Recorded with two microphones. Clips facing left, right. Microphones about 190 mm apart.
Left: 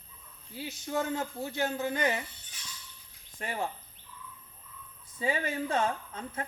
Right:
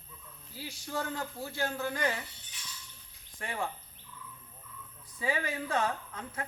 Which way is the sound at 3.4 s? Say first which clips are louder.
Left 2 dB; 20° left (ahead or behind).